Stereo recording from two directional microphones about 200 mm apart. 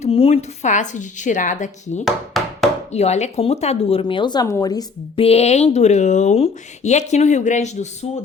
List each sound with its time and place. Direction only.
0.0 s speech: 30° left (ahead or behind)
2.0 s a sound: centre (ahead or behind)
2.9 s speech: 35° left (ahead or behind)